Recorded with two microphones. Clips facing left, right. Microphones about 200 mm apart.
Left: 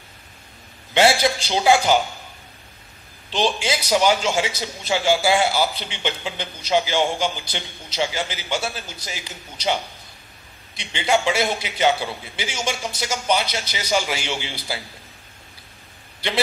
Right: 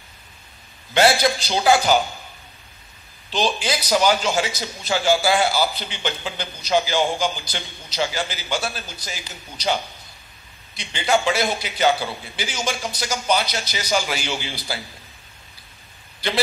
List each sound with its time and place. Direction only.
1.5 s a man's voice: 20° left (ahead or behind)
3.3 s a man's voice: 25° left (ahead or behind)
10.8 s a man's voice: 20° left (ahead or behind)